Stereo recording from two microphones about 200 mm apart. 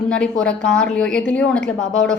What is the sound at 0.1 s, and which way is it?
A woman's voice, 5° left (ahead or behind).